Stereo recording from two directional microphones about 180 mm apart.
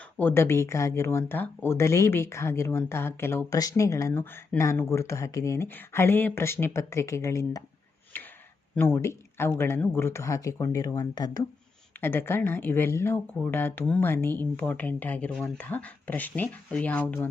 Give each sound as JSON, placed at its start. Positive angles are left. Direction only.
{"t": 0.2, "sound": "speech", "side_deg": 10}
{"t": 8.1, "sound": "a sound", "side_deg": 10}
{"t": 8.7, "sound": "speech", "side_deg": 10}